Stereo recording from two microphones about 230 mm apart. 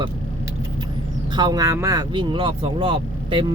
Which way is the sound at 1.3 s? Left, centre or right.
Centre.